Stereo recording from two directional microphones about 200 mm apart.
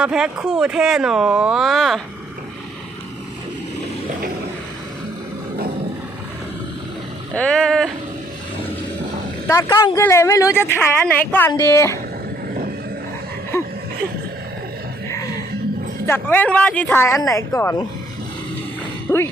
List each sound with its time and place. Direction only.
0.0 s speech: 5° right (ahead or behind)
7.3 s speech: 5° left (ahead or behind)
9.5 s speech: 15° left (ahead or behind)
13.5 s a sound: 15° left (ahead or behind)
15.1 s a sound: 15° left (ahead or behind)
16.0 s speech: 10° left (ahead or behind)
19.1 s speech: 15° left (ahead or behind)